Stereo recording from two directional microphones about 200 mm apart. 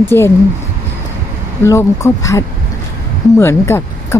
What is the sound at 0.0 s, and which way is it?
Speech, 10° left (ahead or behind).